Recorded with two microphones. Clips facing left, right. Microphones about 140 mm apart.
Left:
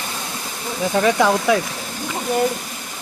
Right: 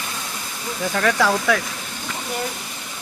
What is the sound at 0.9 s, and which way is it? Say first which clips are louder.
Speech: left 3 dB; 20° left (ahead or behind).